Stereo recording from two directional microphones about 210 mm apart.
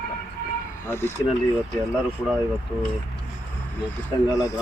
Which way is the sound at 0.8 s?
10° left (ahead or behind).